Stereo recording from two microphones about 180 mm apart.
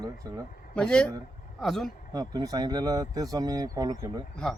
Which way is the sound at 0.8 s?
5° left (ahead or behind).